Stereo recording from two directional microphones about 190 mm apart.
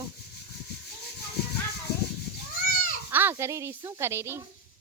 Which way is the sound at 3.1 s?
10° right (ahead or behind).